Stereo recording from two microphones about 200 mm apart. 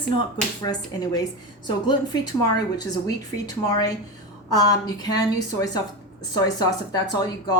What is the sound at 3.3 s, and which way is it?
A woman's voice, 20° left (ahead or behind).